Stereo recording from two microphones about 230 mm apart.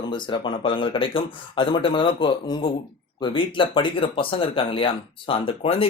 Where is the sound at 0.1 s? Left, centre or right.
Left.